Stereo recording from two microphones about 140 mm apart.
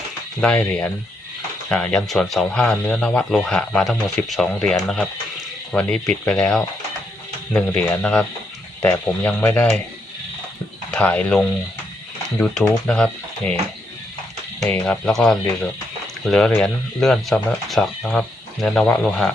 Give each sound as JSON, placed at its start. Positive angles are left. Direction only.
{"t": 0.4, "sound": "speech", "side_deg": 10}
{"t": 7.7, "sound": "speech", "side_deg": 15}
{"t": 10.9, "sound": "speech", "side_deg": 10}
{"t": 14.8, "sound": "speech", "side_deg": 0}